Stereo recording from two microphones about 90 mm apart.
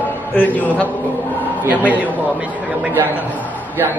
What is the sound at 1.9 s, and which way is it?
A man's voice, 15° right (ahead or behind).